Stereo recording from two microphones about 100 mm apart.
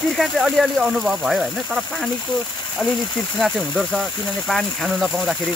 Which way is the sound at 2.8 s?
20° left (ahead or behind).